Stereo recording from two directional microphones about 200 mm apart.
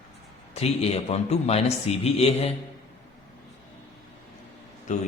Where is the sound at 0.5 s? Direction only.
30° left (ahead or behind).